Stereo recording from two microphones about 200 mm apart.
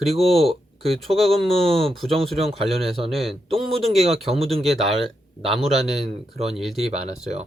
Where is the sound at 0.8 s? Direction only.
Centre (ahead or behind).